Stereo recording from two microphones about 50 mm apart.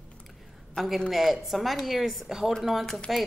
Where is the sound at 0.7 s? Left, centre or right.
Centre.